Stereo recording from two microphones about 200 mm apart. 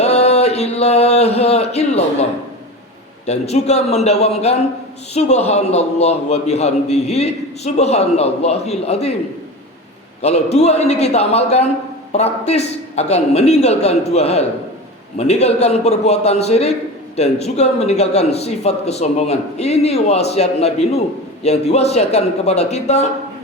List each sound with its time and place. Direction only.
0.0 s a sound: 30° left (ahead or behind)
3.2 s a man's voice: 35° left (ahead or behind)
10.2 s a man's voice: 30° left (ahead or behind)